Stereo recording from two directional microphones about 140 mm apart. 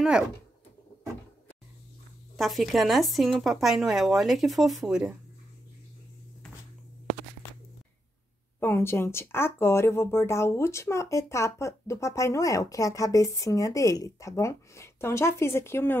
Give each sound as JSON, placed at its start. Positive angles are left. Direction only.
{"t": 2.3, "sound": "speech", "side_deg": 0}
{"t": 8.5, "sound": "speech", "side_deg": 15}